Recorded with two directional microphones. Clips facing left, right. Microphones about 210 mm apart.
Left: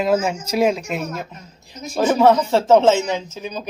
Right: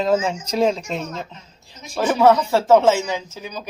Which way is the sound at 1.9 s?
20° left (ahead or behind).